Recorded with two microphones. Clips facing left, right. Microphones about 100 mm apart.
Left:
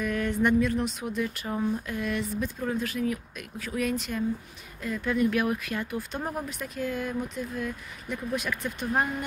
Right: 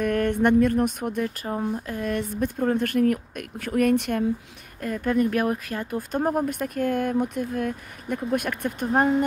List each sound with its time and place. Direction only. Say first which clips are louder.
0.0 s speech: right 5 dB; 55° right (ahead or behind)
4.8 s speech: right 3 dB; 50° right (ahead or behind)
8.8 s speech: right 7 dB; 30° right (ahead or behind)